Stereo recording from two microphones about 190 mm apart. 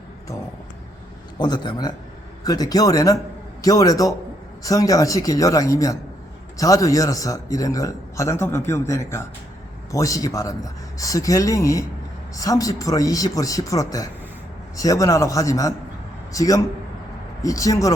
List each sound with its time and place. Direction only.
1.4 s a man's voice: 20° left (ahead or behind)